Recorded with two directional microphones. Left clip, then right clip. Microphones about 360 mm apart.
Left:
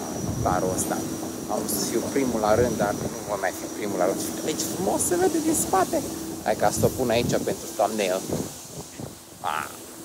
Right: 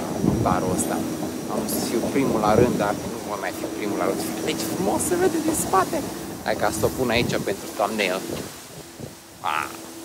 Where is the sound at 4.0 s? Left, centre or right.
Centre.